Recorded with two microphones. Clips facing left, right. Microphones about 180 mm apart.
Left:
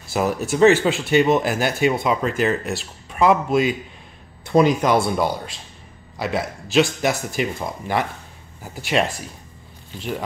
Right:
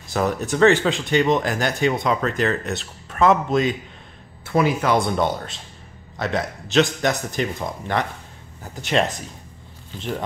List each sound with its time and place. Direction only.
0.1 s speech: 5° left (ahead or behind)
4.5 s speech: 20° left (ahead or behind)
5.0 s a man's voice: 5° left (ahead or behind)